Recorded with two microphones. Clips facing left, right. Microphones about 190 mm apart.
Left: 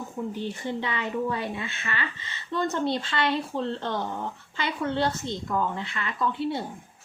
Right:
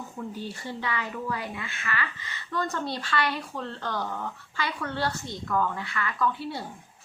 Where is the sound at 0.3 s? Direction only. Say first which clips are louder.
Left 5 dB; 20° left (ahead or behind).